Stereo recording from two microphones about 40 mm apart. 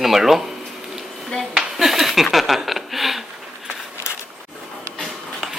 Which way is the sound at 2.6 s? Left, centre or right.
Centre.